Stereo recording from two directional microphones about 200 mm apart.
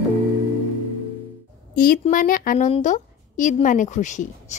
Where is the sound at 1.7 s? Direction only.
45° left (ahead or behind).